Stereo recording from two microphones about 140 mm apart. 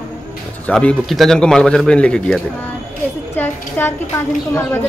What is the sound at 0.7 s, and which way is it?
A man's voice, 5° left (ahead or behind).